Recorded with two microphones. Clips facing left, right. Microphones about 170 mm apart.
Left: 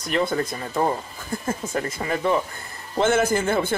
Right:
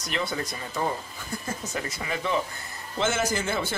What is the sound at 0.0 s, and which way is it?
Speech, 55° left (ahead or behind).